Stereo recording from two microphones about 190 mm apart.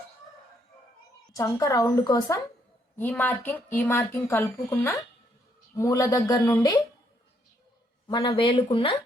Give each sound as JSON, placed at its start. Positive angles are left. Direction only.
{"t": 1.3, "sound": "a woman's voice", "side_deg": 15}
{"t": 3.0, "sound": "a woman's voice", "side_deg": 10}
{"t": 8.0, "sound": "a woman's voice", "side_deg": 25}